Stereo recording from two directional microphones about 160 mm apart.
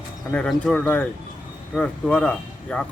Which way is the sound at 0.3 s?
5° left (ahead or behind).